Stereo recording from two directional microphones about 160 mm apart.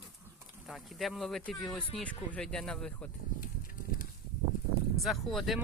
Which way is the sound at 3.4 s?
60° left (ahead or behind).